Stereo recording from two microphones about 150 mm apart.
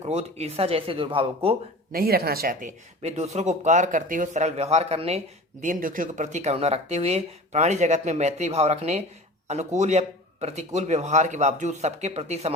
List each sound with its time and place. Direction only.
0.0 s speech: 45° right (ahead or behind)
1.9 s speech: 90° right; by 2.7 s 65° right (ahead or behind)
3.0 s speech: 45° right (ahead or behind)
5.6 s speech: 65° right (ahead or behind); by 12.5 s 45° right (ahead or behind)